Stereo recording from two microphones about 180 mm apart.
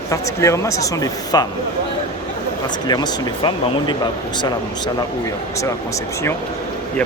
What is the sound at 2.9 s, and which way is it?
Speech, 25° left (ahead or behind).